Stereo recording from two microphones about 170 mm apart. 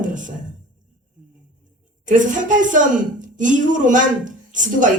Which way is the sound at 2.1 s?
50° right (ahead or behind).